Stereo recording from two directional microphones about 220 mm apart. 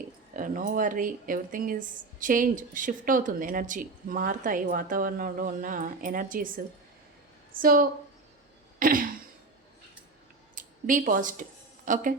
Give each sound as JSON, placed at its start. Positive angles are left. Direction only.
{"t": 0.3, "sound": "speech", "side_deg": -35}
{"t": 7.6, "sound": "speech", "side_deg": -40}
{"t": 8.8, "sound": "throat clearing", "side_deg": -40}
{"t": 10.5, "sound": "speech", "side_deg": -35}